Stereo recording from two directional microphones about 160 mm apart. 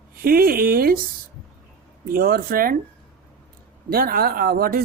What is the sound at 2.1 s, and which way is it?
Speech, 65° right (ahead or behind).